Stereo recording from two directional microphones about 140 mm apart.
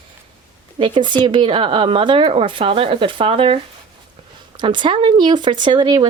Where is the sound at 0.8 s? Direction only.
35° right (ahead or behind).